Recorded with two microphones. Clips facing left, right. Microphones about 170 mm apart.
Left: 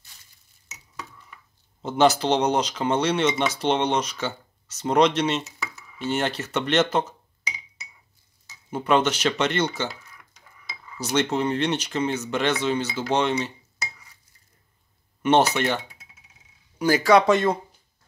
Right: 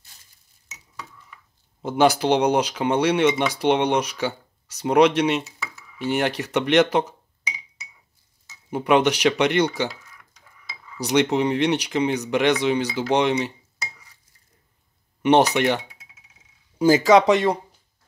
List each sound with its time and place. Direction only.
1.8 s speech: 10° right (ahead or behind)
8.6 s speech: 15° right (ahead or behind)
11.0 s speech: 15° right (ahead or behind)
15.2 s speech: 15° right (ahead or behind)